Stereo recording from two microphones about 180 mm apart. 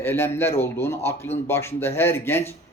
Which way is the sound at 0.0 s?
15° left (ahead or behind).